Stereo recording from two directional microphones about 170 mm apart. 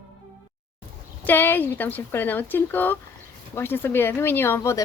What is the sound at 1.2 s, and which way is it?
Speech, 10° left (ahead or behind).